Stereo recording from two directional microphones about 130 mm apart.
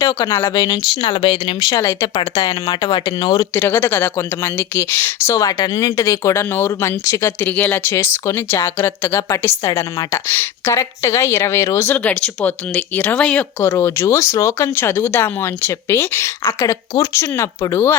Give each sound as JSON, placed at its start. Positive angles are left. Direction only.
{"t": 0.0, "sound": "a woman's voice", "side_deg": 25}
{"t": 1.0, "sound": "speech", "side_deg": 45}
{"t": 1.8, "sound": "a woman's voice", "side_deg": 20}
{"t": 2.1, "sound": "speech", "side_deg": 30}
{"t": 3.5, "sound": "a woman's voice", "side_deg": 15}